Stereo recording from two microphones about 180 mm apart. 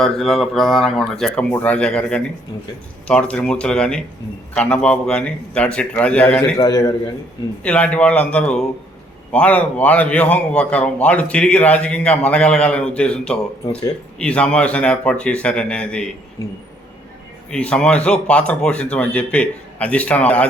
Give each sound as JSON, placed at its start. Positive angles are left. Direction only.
{"t": 0.0, "sound": "speech", "side_deg": 0}
{"t": 6.6, "sound": "a man's voice", "side_deg": 20}
{"t": 7.6, "sound": "a man's voice", "side_deg": 5}
{"t": 17.5, "sound": "a man's voice", "side_deg": 5}